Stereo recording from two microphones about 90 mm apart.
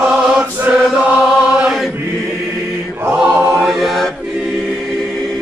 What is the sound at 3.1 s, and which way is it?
Choir, 20° right (ahead or behind).